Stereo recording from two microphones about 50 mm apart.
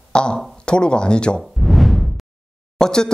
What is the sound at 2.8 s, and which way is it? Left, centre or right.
Speech, centre.